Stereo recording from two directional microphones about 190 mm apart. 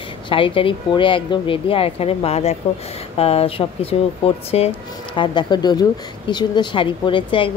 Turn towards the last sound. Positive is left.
turn(degrees=25)  # may be behind; listen again after turning